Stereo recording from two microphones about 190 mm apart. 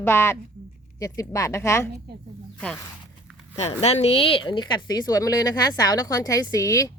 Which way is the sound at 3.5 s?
35° left (ahead or behind).